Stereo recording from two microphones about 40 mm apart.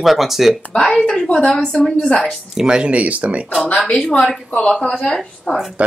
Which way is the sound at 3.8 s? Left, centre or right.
Centre.